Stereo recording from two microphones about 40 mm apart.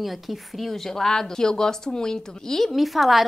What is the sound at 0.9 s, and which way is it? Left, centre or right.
A woman's voice, centre.